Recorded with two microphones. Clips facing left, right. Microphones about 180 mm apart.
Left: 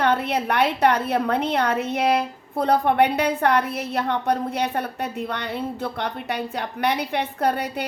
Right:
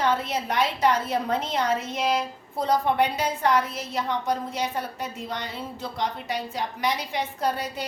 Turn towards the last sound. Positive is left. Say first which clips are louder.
# left 4 dB
turn(degrees=60)  # may be behind; listen again after turning